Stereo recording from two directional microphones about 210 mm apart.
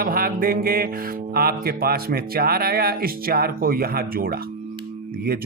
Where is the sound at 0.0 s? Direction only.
45° right (ahead or behind).